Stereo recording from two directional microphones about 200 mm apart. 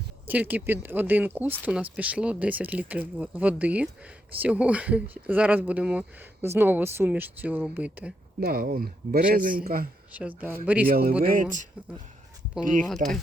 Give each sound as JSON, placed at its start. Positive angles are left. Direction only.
{"t": 0.3, "sound": "speech", "side_deg": -10}
{"t": 8.4, "sound": "speech", "side_deg": -50}
{"t": 10.2, "sound": "speech", "side_deg": -10}
{"t": 10.8, "sound": "speech", "side_deg": -50}
{"t": 12.9, "sound": "speech", "side_deg": 0}